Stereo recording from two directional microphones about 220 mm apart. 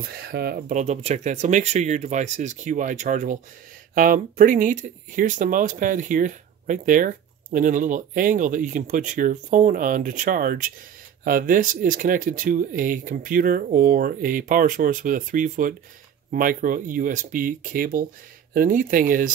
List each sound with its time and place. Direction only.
0.2 s speech: 45° right (ahead or behind)